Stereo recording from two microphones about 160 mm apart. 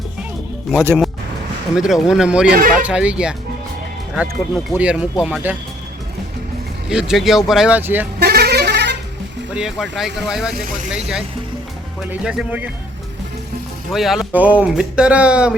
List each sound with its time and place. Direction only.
0.9 s speech: 5° right (ahead or behind)
6.8 s speech: 5° right (ahead or behind)
8.2 s a sound: 90° right
9.6 s speech: 5° right (ahead or behind)
13.9 s speech: centre (ahead or behind)